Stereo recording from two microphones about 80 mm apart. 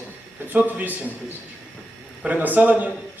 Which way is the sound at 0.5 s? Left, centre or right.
Right.